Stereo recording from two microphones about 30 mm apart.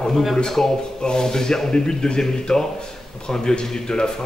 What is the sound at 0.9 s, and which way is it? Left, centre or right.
Speech, left.